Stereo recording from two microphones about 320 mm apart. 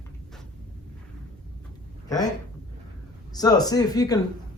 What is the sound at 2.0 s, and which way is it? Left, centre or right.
Speech, centre.